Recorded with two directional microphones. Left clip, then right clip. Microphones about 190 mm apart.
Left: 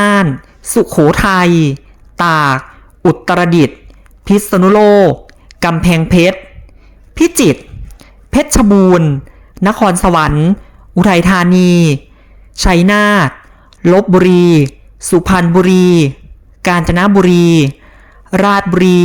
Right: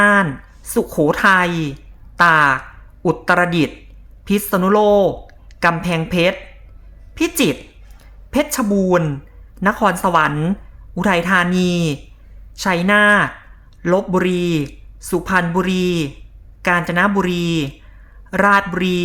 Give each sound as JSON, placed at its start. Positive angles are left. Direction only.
{"t": 0.0, "sound": "a sound", "side_deg": 40}
{"t": 0.6, "sound": "a woman's voice", "side_deg": 35}
{"t": 7.9, "sound": "a sound", "side_deg": 35}
{"t": 9.6, "sound": "speech", "side_deg": 35}
{"t": 10.3, "sound": "speech", "side_deg": 20}
{"t": 10.9, "sound": "a man's voice", "side_deg": 35}